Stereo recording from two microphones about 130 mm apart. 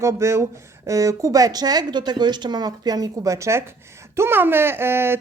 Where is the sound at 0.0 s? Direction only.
20° right (ahead or behind).